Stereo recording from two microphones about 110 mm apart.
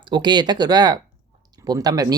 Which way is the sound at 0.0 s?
45° right (ahead or behind).